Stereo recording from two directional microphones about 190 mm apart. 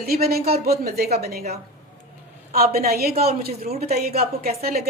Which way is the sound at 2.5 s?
50° right (ahead or behind).